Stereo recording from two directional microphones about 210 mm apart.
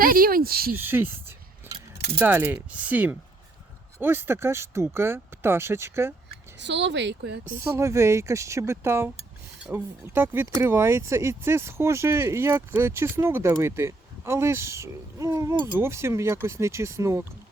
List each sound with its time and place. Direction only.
0.0 s speech: 45° right (ahead or behind)
0.8 s speech: 10° right (ahead or behind)
1.7 s keys jangling: 10° right (ahead or behind)
2.1 s speech: 10° right (ahead or behind)
6.6 s speech: 55° right (ahead or behind)
7.6 s speech: 15° right (ahead or behind)